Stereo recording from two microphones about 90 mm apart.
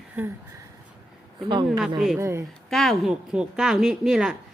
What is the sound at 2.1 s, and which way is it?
Speech, 30° right (ahead or behind).